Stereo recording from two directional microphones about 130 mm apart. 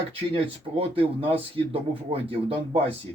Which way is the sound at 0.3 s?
45° right (ahead or behind).